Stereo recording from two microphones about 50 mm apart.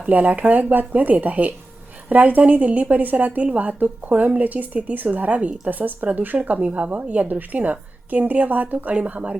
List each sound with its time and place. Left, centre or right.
0.0 s a woman's voice: right